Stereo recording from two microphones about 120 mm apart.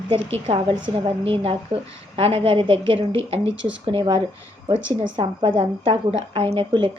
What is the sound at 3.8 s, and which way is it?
Speech, 40° right (ahead or behind).